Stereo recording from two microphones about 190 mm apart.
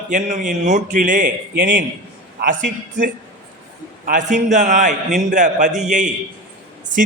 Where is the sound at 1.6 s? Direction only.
70° right (ahead or behind).